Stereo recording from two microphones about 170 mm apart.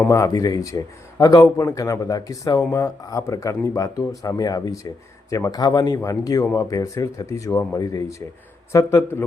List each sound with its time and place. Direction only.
0.1 s a man's voice: 20° left (ahead or behind)